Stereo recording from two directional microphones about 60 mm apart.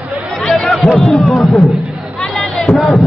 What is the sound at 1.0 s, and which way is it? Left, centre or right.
Music, centre.